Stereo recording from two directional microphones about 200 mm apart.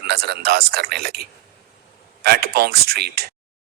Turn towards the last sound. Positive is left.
turn(degrees=-50)  # may be behind; listen again after turning